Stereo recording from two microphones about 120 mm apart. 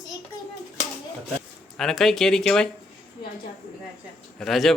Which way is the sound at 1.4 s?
5° left (ahead or behind).